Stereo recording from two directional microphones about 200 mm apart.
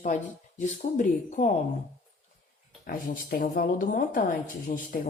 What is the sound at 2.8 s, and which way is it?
A woman's voice, 45° left (ahead or behind).